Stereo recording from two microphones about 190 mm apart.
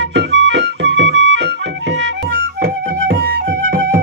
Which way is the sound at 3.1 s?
75° right (ahead or behind).